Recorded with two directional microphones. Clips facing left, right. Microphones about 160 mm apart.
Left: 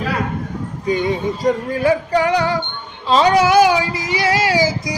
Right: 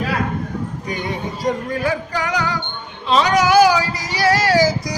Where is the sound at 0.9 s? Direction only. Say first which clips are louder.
Left 10 dB; 25° left (ahead or behind).